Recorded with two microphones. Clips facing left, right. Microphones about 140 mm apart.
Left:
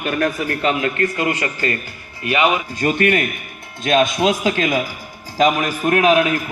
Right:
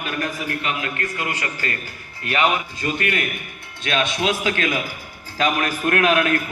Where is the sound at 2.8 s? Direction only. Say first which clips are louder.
Left 10 dB; 50° left (ahead or behind).